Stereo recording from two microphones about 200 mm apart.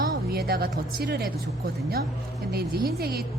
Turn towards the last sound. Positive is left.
turn(degrees=-50)  # may be behind; listen again after turning